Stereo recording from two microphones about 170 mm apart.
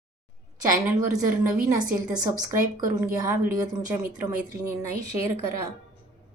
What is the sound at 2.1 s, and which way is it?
A woman's voice, 20° right (ahead or behind).